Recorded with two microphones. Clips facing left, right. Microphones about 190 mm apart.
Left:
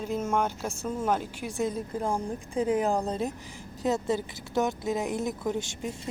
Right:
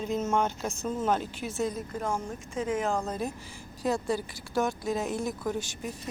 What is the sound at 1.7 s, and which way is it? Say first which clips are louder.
A woman's voice: left 2 dB; 30° left (ahead or behind).